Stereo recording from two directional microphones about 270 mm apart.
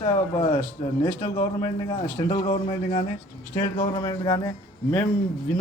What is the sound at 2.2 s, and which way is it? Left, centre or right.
A man's voice, left.